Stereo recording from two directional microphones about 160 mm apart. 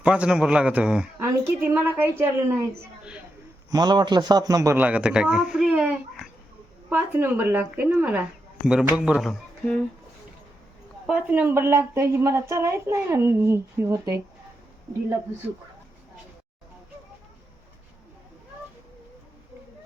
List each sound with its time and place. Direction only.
0.0 s a woman's voice: 5° right (ahead or behind)
3.0 s a sound: 5° right (ahead or behind)
3.7 s a woman's voice: 25° right (ahead or behind); by 9.7 s centre (ahead or behind)
11.0 s a woman's voice: 5° right (ahead or behind)